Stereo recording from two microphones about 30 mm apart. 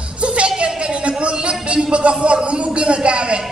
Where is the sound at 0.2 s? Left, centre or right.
Right.